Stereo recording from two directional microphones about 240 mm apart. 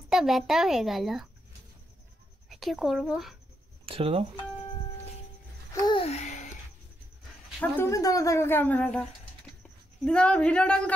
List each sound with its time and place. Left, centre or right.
0.1 s a child's voice: centre
2.5 s a child's voice: centre
3.8 s speech: right
5.7 s babbling: centre
7.6 s a child's voice: centre